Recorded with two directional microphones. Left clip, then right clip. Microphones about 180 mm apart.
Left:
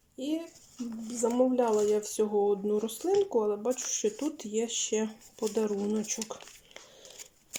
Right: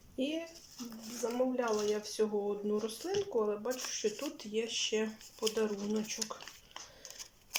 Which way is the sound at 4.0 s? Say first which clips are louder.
Left 5 dB; 30° left (ahead or behind).